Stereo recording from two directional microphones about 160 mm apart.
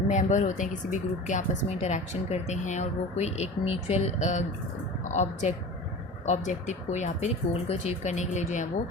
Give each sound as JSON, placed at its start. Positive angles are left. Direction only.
{"t": 0.1, "sound": "speech", "side_deg": 50}